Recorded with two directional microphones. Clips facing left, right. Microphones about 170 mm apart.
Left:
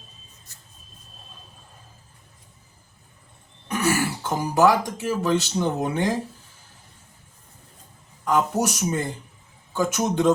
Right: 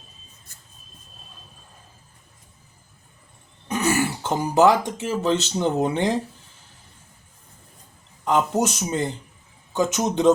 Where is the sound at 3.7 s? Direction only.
20° right (ahead or behind).